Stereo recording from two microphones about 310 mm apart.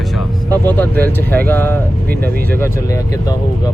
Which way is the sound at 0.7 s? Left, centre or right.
Centre.